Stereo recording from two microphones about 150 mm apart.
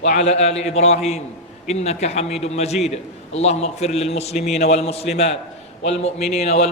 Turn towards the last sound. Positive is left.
turn(degrees=45)  # may be behind; listen again after turning